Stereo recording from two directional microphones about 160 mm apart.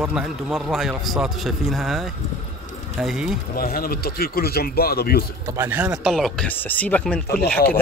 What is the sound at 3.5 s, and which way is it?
A man's voice, 65° left (ahead or behind).